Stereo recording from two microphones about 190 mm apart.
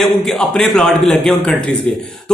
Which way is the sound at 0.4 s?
5° left (ahead or behind).